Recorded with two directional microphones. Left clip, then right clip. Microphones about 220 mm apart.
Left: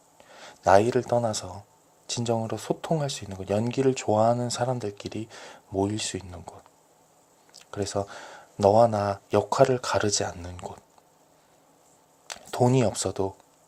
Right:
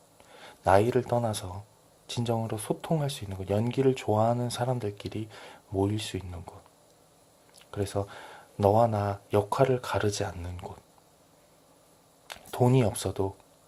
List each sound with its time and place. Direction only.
0.2 s speech: 15° left (ahead or behind)
7.5 s speech: 15° left (ahead or behind)
12.3 s speech: 15° left (ahead or behind)